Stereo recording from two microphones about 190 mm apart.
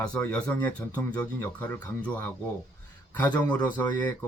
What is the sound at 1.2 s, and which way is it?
Speech, 20° left (ahead or behind).